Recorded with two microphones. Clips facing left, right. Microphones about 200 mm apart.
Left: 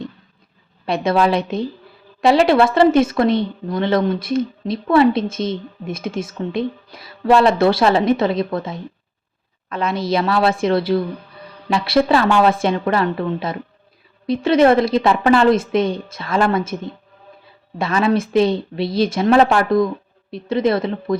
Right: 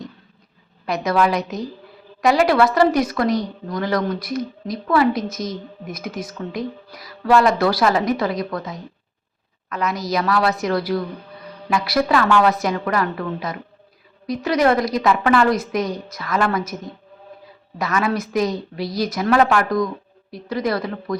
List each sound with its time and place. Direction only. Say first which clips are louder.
0.9 s a woman's voice: left 2 dB; 30° left (ahead or behind)